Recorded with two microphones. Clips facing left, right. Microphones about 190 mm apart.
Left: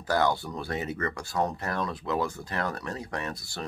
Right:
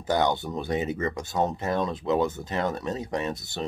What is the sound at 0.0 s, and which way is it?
Speech, 20° right (ahead or behind).